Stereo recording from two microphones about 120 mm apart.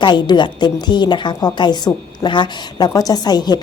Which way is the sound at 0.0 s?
40° left (ahead or behind).